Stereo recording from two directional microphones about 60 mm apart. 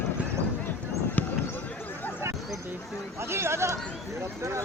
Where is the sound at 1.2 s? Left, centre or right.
Left.